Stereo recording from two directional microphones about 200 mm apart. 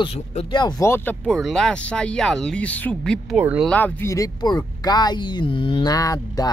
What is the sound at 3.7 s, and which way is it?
Speech, 10° left (ahead or behind).